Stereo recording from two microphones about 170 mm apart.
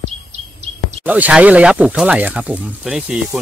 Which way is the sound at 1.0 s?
10° right (ahead or behind).